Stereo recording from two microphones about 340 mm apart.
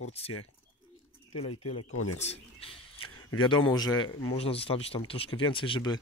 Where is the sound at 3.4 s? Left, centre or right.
Centre.